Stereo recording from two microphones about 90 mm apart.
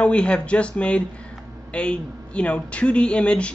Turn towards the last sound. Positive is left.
turn(degrees=10)  # may be behind; listen again after turning